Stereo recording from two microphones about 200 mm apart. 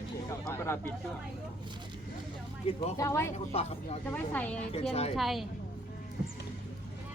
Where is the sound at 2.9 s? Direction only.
15° left (ahead or behind).